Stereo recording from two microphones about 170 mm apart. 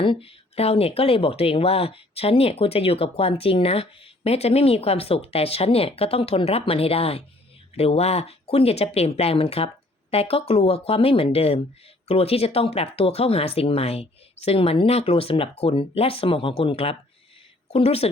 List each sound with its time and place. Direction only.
0.0 s a woman's voice: 30° left (ahead or behind)